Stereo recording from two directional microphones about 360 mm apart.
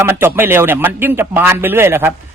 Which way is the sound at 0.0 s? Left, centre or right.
Centre.